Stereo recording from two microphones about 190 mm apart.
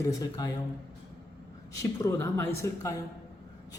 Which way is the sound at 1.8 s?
15° left (ahead or behind).